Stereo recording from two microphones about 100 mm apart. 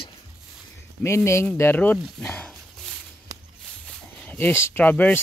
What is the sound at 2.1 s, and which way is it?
Speech, 10° left (ahead or behind).